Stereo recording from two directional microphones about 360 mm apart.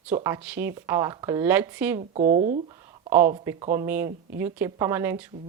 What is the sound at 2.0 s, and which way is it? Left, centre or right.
Speech, centre.